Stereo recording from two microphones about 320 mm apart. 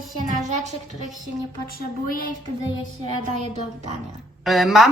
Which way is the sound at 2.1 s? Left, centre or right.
Left.